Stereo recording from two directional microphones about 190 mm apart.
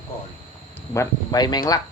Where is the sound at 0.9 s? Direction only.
20° left (ahead or behind).